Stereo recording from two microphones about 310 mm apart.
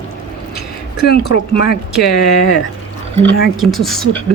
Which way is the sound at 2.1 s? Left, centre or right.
Left.